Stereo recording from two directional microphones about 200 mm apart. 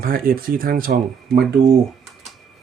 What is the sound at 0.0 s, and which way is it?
Speech, 45° right (ahead or behind).